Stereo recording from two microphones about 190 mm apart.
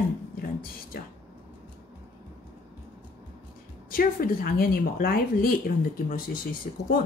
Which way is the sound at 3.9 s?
50° left (ahead or behind).